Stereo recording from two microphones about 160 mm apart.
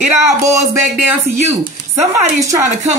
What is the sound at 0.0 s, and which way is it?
Speech, 15° right (ahead or behind).